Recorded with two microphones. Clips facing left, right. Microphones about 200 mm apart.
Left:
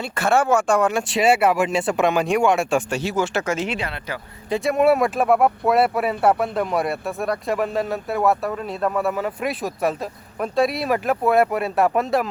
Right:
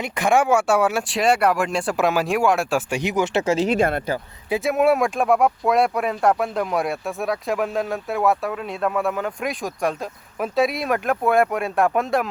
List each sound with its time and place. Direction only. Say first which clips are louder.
0.0 s speech: right 1 dB; 15° right (ahead or behind)
2.9 s speech: right 1 dB; 15° right (ahead or behind)
3.4 s speech: right 5 dB; 35° right (ahead or behind)
3.8 s speech: right 9 dB; 50° right (ahead or behind)
4.4 s speech: left 1 dB; 5° right (ahead or behind)